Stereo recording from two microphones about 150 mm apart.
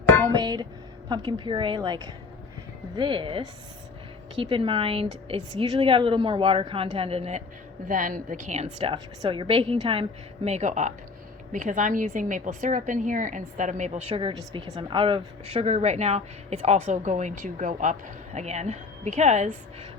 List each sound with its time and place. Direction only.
0.3 s a woman's voice: 25° right (ahead or behind); by 7.4 s 45° right (ahead or behind)
7.9 s a woman's voice: 65° right (ahead or behind)
8.9 s a woman's voice: 35° right (ahead or behind); by 14.0 s 55° right (ahead or behind)
14.1 s a woman's voice: 35° right (ahead or behind); by 17.9 s 60° right (ahead or behind)
18.3 s speech: 50° right (ahead or behind)